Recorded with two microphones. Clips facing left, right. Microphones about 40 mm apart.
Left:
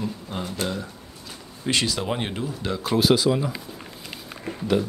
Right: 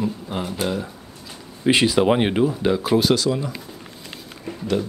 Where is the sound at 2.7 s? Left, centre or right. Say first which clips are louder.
Right 7 dB; centre.